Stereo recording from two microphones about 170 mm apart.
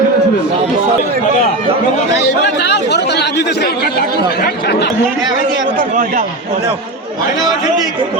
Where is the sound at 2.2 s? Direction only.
85° left.